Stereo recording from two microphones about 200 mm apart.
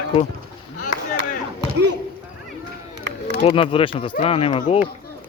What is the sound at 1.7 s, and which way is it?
Basketball bounce, 60° right (ahead or behind).